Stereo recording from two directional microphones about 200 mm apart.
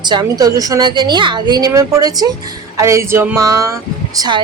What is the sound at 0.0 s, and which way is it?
A woman's voice, 20° right (ahead or behind).